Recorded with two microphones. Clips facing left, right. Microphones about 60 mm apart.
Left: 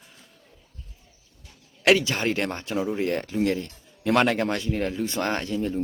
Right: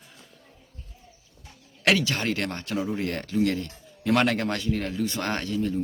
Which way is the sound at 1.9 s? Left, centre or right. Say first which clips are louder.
Left 2 dB; left.